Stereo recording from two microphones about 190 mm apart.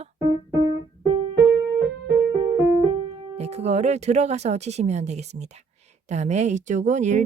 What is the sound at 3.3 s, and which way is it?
Speech, 35° right (ahead or behind).